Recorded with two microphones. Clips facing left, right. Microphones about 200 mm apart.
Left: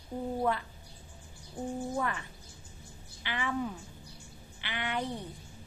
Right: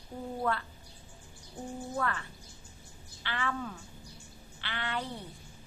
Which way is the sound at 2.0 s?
15° left (ahead or behind).